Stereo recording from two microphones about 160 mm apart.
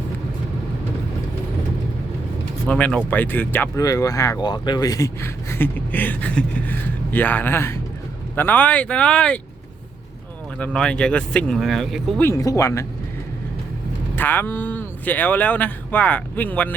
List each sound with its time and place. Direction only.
2.6 s speech: 10° left (ahead or behind)
10.6 s speech: 5° left (ahead or behind)
12.2 s speech: 20° left (ahead or behind)
14.2 s speech: 10° left (ahead or behind)